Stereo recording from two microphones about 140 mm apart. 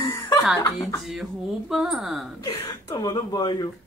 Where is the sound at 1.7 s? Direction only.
5° right (ahead or behind).